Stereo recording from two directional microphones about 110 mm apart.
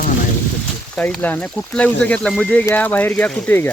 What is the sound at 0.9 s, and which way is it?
Speech, 10° left (ahead or behind).